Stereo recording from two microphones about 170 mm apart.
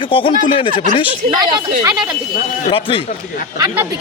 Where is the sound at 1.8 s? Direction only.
20° right (ahead or behind).